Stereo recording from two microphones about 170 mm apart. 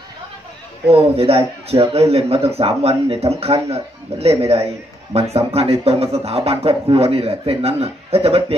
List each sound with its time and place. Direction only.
0.9 s speech: 35° right (ahead or behind)